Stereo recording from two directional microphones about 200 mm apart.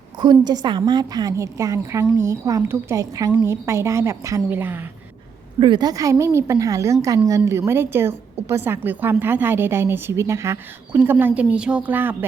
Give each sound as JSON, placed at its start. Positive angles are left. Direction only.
{"t": 0.2, "sound": "a woman's voice", "side_deg": -20}
{"t": 5.5, "sound": "a woman's voice", "side_deg": -25}